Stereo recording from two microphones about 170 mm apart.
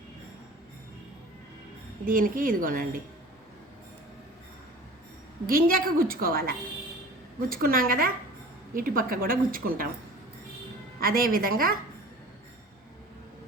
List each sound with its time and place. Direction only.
2.0 s speech: 55° right (ahead or behind)
5.5 s a woman's voice: 55° right (ahead or behind)
11.0 s a woman's voice: 55° right (ahead or behind)